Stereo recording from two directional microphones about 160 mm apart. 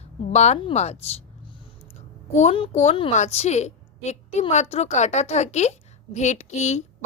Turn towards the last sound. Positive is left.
turn(degrees=45)  # may be behind; listen again after turning